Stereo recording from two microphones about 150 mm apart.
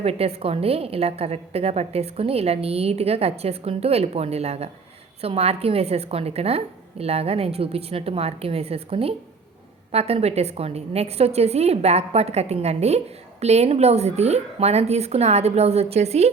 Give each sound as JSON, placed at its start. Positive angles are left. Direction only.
{"t": 0.0, "sound": "a woman's voice", "side_deg": -40}